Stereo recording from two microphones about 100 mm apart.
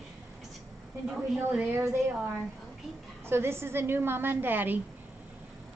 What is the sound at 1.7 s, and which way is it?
Speech, 25° right (ahead or behind).